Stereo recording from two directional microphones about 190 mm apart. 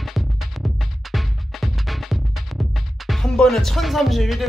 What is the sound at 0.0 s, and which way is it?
Music, centre (ahead or behind).